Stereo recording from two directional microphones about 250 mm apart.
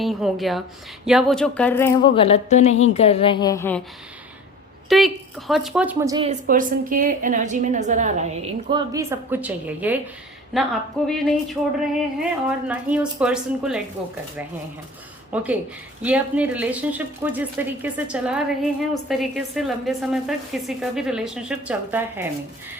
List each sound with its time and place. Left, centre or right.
0.0 s a woman's voice: centre
4.9 s a woman's voice: centre
6.2 s a woman's voice: right; by 11.3 s centre
12.6 s a woman's voice: centre
15.3 s a woman's voice: centre